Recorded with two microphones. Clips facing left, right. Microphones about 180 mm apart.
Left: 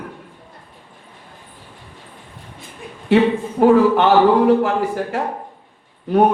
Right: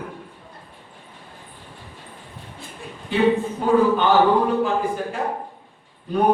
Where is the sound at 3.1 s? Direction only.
75° left (ahead or behind).